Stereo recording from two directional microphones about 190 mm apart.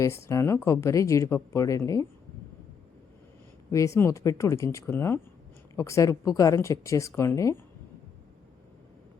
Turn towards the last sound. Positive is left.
turn(degrees=15)  # may be behind; listen again after turning